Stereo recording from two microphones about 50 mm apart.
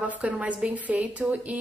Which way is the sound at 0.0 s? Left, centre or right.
Right.